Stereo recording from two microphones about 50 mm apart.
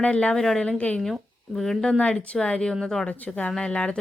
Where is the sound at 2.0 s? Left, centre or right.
Left.